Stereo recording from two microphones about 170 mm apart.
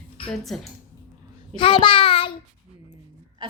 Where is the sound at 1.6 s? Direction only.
30° left (ahead or behind).